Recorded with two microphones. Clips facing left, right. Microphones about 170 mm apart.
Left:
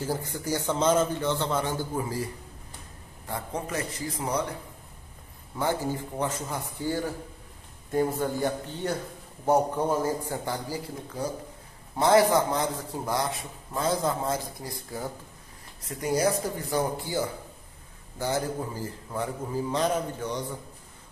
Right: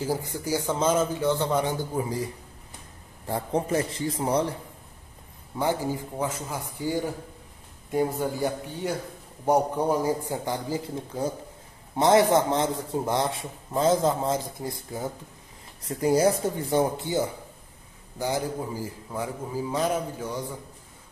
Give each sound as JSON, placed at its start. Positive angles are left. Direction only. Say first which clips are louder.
{"t": 0.0, "sound": "a man's voice", "louder": "right 2 dB", "side_deg": -10}
{"t": 3.3, "sound": "a man's voice", "louder": "right 6 dB", "side_deg": -30}
{"t": 5.6, "sound": "a man's voice", "louder": "right 2 dB", "side_deg": -15}